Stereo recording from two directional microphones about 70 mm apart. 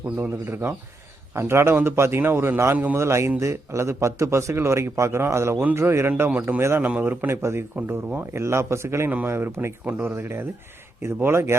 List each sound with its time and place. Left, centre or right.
0.2 s speech: right
6.8 s a man's voice: right
7.9 s speech: right
9.0 s speech: right